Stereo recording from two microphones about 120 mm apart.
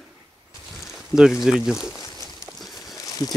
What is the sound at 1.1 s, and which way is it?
Speech, 5° right (ahead or behind).